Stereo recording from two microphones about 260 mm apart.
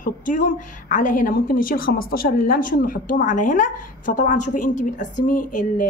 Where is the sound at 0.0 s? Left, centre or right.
Left.